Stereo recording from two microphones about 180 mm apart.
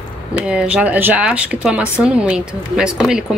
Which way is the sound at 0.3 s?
5° right (ahead or behind).